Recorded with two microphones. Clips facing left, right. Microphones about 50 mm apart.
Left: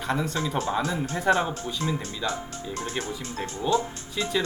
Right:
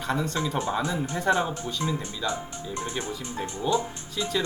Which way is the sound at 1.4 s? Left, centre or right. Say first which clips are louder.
Even; centre.